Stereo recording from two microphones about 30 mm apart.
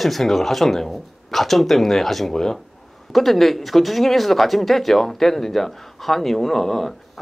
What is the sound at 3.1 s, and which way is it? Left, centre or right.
Speech, centre.